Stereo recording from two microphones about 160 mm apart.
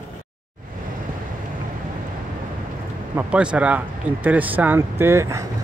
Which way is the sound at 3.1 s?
5° right (ahead or behind).